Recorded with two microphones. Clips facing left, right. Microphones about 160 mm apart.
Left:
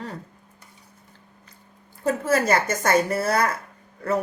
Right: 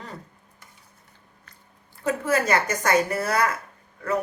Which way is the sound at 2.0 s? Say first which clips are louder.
Left 2 dB; 30° left (ahead or behind).